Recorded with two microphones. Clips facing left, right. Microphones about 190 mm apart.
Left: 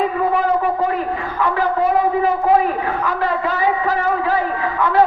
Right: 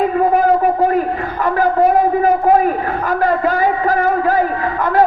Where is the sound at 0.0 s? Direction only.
45° right (ahead or behind).